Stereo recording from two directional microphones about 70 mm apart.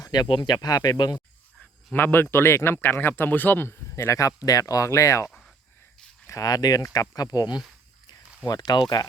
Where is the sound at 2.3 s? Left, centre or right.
Left.